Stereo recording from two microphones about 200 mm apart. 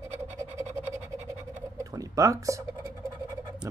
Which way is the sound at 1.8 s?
15° right (ahead or behind).